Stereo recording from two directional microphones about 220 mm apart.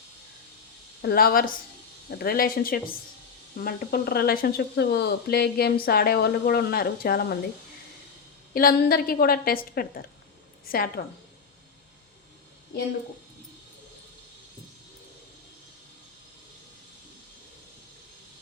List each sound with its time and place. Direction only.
1.0 s a woman's voice: 40° left (ahead or behind)
8.5 s a woman's voice: 45° left (ahead or behind)